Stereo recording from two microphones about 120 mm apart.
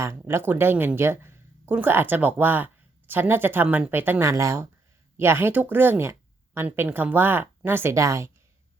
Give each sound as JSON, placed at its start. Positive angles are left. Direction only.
{"t": 0.3, "sound": "speech", "side_deg": -20}